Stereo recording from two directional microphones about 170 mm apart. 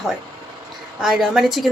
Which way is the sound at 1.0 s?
Centre (ahead or behind).